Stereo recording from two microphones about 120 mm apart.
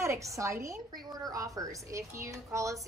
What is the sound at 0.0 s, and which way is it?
A woman's voice, 25° right (ahead or behind).